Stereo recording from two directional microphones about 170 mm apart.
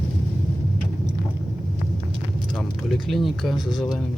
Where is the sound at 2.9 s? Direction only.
Centre (ahead or behind).